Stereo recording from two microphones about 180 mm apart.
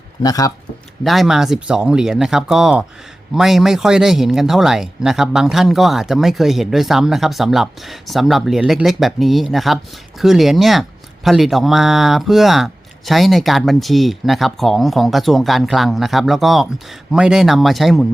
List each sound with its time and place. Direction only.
0.2 s speech: 20° left (ahead or behind)
1.0 s speech: centre (ahead or behind)